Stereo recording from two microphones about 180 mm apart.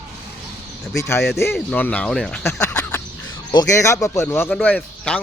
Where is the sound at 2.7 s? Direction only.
10° left (ahead or behind).